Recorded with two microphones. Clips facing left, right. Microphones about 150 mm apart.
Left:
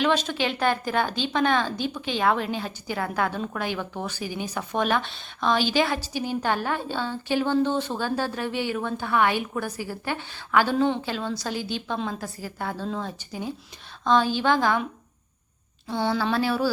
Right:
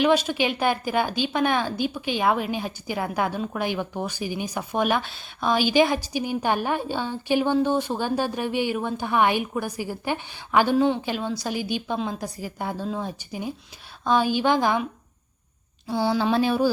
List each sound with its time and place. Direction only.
0.0 s speech: 10° right (ahead or behind)
15.9 s speech: 10° right (ahead or behind)